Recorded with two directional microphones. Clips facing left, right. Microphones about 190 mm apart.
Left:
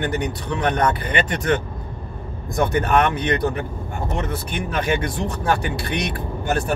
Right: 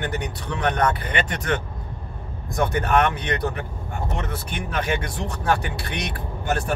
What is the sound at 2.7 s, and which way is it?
Speech, 20° left (ahead or behind).